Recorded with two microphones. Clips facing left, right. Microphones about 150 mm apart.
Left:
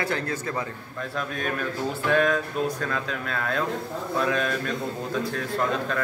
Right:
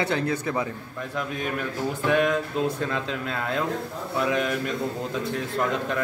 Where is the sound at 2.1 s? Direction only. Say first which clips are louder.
Even; 20° right (ahead or behind).